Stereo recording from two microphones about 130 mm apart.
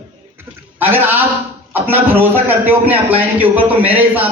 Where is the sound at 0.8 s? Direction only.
15° right (ahead or behind).